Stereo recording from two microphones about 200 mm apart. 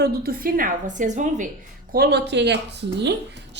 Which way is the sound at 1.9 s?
55° right (ahead or behind).